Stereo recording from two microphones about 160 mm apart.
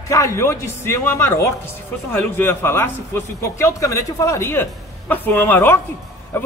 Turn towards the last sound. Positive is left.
turn(degrees=15)  # may be behind; listen again after turning